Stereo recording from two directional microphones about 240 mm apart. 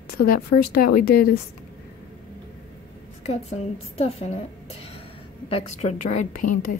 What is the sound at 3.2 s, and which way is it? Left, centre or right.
A woman's voice, left.